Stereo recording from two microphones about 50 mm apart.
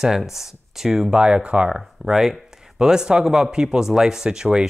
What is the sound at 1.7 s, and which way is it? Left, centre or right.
Speech, centre.